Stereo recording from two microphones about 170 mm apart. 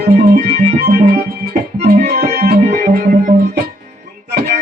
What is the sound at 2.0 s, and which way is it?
Music, 50° right (ahead or behind).